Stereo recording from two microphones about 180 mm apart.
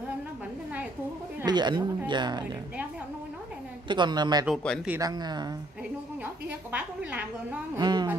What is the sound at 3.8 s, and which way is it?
Speech, 25° right (ahead or behind).